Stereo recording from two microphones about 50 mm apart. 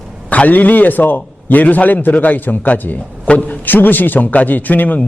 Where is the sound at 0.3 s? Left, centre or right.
Left.